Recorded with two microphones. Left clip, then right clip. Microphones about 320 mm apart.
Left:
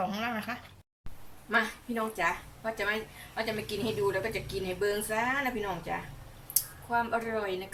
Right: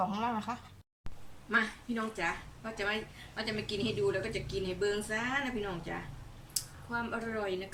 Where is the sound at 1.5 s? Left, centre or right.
Centre.